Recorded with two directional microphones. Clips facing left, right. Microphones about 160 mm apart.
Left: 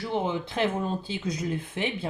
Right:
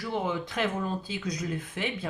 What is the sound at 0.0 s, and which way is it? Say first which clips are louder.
Speech: left 2 dB; 25° left (ahead or behind).